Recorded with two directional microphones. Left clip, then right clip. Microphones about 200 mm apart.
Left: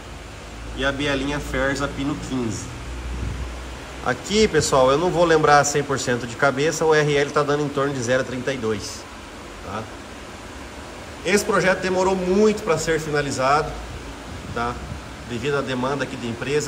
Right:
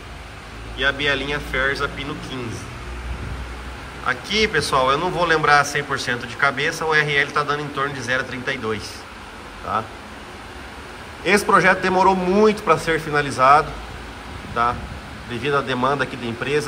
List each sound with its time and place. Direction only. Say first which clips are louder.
0.7 s a man's voice: right 3 dB; 20° left (ahead or behind)
4.0 s a man's voice: even; 20° left (ahead or behind); by 9.9 s 5° left (ahead or behind)
11.2 s a man's voice: right 4 dB; 5° left (ahead or behind)